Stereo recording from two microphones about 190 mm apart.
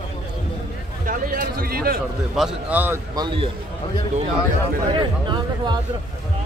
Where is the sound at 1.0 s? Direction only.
45° right (ahead or behind).